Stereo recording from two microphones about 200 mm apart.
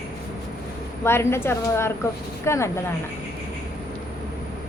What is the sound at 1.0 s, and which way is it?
A woman's voice, 10° left (ahead or behind).